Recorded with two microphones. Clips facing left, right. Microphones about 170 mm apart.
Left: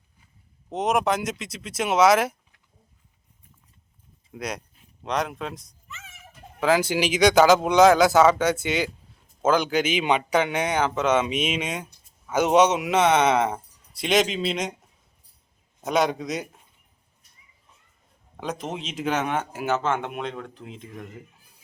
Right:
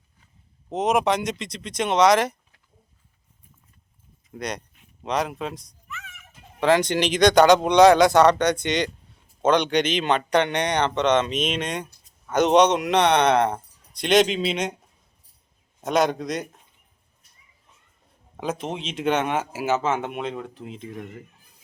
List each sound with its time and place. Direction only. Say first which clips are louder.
0.7 s speech: right 2 dB; centre (ahead or behind)
4.3 s speech: right 1 dB; 5° left (ahead or behind)
5.9 s a sound: right 4 dB; 25° left (ahead or behind)
6.6 s speech: right 2 dB; 5° left (ahead or behind)
15.8 s speech: right 1 dB; centre (ahead or behind)
18.3 s speech: right 2 dB; centre (ahead or behind)